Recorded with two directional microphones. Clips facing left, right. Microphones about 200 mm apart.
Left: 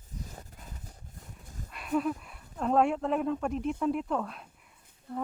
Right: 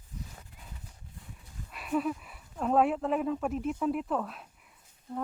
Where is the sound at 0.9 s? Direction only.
45° left (ahead or behind).